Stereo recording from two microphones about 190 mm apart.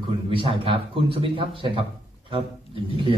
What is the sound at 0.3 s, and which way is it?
A man's voice, 30° right (ahead or behind).